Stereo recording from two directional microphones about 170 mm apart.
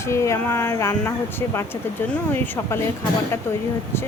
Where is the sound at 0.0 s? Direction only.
15° left (ahead or behind).